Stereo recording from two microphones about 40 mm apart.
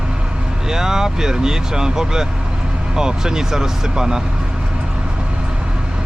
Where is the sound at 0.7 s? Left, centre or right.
Centre.